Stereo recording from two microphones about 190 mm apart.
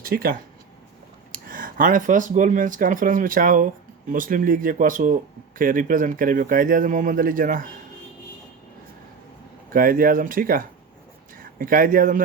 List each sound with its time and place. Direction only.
0.0 s speech: 50° right (ahead or behind)
9.7 s speech: 50° right (ahead or behind)